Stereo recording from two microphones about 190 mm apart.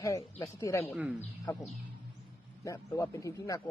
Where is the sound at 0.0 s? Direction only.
15° left (ahead or behind).